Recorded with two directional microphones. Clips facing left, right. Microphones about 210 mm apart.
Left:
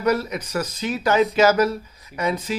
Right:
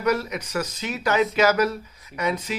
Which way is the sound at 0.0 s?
35° left (ahead or behind).